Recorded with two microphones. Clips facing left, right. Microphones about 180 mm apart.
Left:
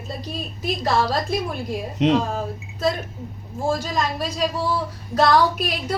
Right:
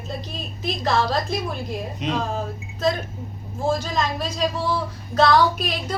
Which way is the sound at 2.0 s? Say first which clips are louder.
Left 10 dB; 85° left.